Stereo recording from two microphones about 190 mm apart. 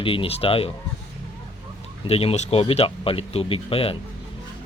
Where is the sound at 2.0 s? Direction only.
30° left (ahead or behind).